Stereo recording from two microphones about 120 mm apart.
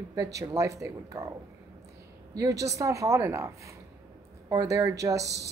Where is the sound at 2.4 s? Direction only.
30° right (ahead or behind).